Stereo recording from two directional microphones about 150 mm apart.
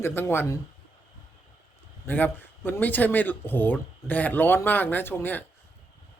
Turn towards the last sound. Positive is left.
turn(degrees=15)  # may be behind; listen again after turning